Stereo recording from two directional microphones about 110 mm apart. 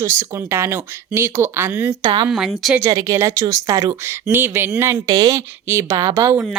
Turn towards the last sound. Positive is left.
turn(degrees=-25)  # may be behind; listen again after turning